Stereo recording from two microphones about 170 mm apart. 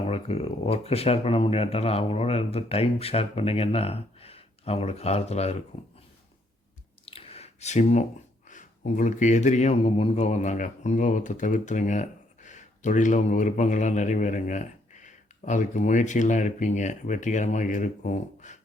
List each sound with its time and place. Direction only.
0.1 s speech: 35° left (ahead or behind)
7.0 s a sound: 35° left (ahead or behind)
8.4 s speech: 50° left (ahead or behind)